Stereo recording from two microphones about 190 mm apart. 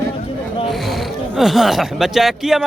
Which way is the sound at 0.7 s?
Centre (ahead or behind).